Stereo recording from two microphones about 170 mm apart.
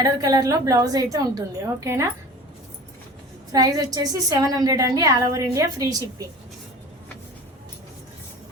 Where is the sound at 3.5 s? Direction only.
20° right (ahead or behind).